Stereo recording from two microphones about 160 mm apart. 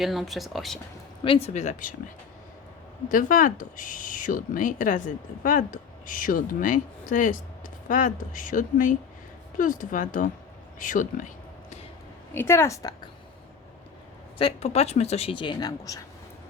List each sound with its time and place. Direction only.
0.0 s speech: centre (ahead or behind)
1.2 s speech: 35° left (ahead or behind); by 2.0 s 55° left (ahead or behind)
3.1 s speech: 60° left (ahead or behind)
12.3 s a woman's voice: 15° left (ahead or behind)
14.3 s speech: 40° left (ahead or behind)